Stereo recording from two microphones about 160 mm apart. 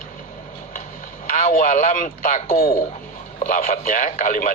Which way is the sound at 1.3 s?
50° left (ahead or behind).